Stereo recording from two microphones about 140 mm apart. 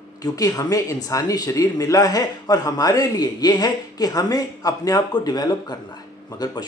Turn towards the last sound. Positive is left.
turn(degrees=30)  # may be behind; listen again after turning